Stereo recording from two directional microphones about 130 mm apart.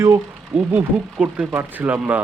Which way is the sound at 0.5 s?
10° right (ahead or behind).